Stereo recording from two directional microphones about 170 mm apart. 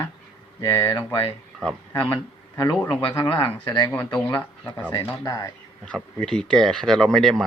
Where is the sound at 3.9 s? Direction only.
10° left (ahead or behind).